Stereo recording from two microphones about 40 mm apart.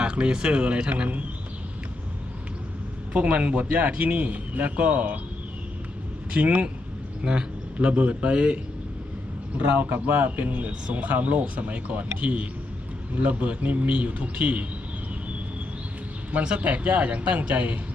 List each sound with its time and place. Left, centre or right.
0.0 s a man's voice: right
3.1 s a man's voice: right
6.3 s a man's voice: right
7.8 s a man's voice: right
9.6 s a man's voice: right
16.3 s a man's voice: right